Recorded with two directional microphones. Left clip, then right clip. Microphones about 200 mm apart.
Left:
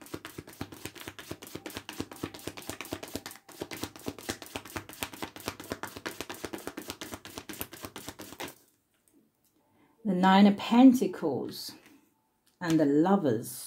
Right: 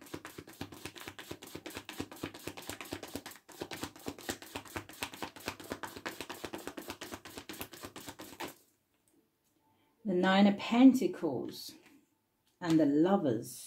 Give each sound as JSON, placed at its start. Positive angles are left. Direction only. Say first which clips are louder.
{"t": 0.1, "sound": "chopping", "louder": "left 4 dB", "side_deg": 15}
{"t": 10.0, "sound": "speech", "louder": "left 5 dB", "side_deg": 35}